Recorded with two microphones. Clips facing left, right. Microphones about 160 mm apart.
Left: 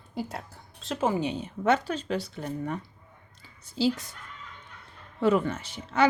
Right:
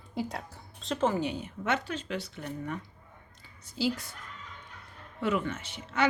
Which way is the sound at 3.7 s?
25° left (ahead or behind).